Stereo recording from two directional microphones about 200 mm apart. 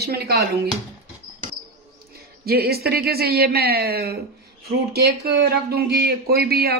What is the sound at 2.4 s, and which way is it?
Speech, 50° right (ahead or behind).